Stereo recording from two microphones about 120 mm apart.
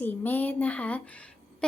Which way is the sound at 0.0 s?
15° left (ahead or behind).